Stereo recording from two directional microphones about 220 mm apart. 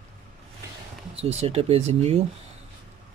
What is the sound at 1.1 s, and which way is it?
Speech, 25° right (ahead or behind).